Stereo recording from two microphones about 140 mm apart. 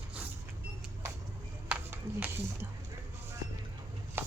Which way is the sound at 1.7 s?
15° right (ahead or behind).